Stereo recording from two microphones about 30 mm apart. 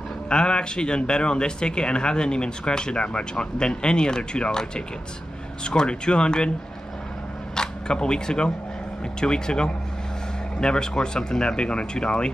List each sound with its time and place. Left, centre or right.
0.3 s speech: left
7.5 s speech: left